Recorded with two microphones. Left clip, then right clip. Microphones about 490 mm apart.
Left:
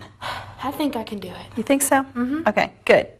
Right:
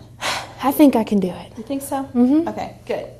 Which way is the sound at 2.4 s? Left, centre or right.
Left.